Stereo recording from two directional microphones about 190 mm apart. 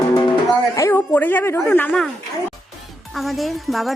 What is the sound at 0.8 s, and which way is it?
A woman's voice, 15° left (ahead or behind).